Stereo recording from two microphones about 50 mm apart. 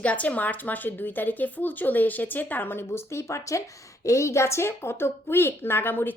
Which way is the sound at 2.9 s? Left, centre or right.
Left.